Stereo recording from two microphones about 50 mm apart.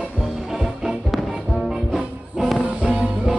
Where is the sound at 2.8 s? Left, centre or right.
Centre.